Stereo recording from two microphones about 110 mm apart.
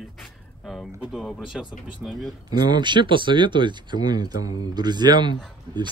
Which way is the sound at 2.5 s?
40° right (ahead or behind).